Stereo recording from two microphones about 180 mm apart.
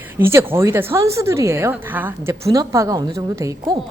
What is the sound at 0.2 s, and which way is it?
A woman's voice, 15° right (ahead or behind).